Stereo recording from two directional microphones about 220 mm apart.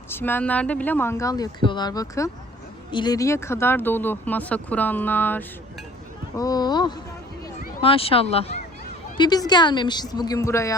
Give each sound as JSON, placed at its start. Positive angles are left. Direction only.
{"t": 0.1, "sound": "a woman's voice", "side_deg": 10}